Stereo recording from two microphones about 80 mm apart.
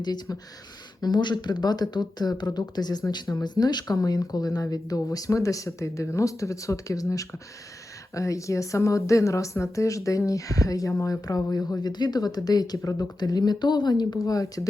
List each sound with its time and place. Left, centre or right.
0.0 s speech: left